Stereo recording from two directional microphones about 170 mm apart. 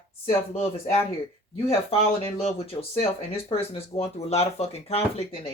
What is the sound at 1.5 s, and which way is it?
Speech, 35° left (ahead or behind).